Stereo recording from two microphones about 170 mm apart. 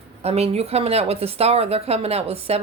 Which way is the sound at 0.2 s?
40° right (ahead or behind).